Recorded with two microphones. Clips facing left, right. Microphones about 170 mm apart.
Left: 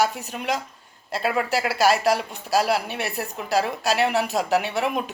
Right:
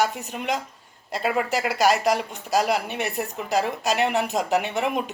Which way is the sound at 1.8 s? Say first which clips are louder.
Left 1 dB; 15° right (ahead or behind).